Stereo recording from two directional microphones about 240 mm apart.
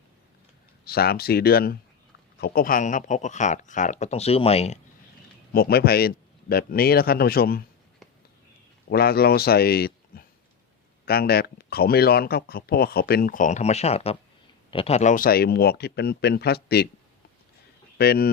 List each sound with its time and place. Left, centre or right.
0.9 s speech: left
5.5 s speech: left
8.9 s speech: left
17.9 s a man's voice: left